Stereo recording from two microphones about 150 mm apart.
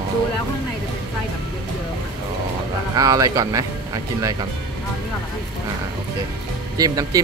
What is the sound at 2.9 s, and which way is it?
Speech, 25° right (ahead or behind).